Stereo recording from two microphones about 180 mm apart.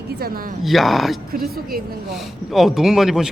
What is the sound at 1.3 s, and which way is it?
Speech, 55° right (ahead or behind).